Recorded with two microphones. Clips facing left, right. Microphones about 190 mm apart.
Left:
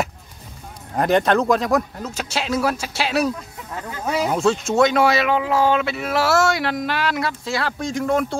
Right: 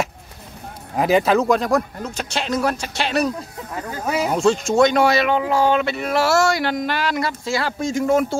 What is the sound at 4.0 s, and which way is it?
Speech, 5° right (ahead or behind).